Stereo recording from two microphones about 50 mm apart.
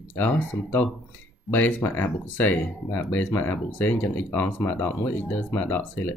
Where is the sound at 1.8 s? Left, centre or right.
Left.